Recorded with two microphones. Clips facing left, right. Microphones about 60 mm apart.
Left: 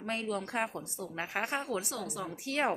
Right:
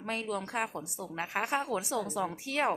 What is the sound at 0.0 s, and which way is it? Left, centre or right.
A woman's voice, centre.